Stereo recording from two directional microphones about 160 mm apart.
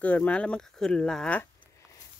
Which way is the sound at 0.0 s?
10° left (ahead or behind).